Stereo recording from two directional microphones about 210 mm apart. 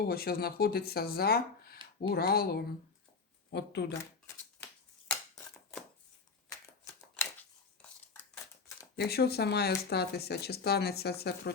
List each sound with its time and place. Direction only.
0.0 s speech: 45° left (ahead or behind)
5.0 s a sound: 5° left (ahead or behind)
9.0 s speech: 50° left (ahead or behind)